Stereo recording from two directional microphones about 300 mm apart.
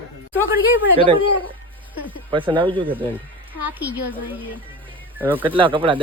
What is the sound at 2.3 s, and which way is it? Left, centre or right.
Speech, centre.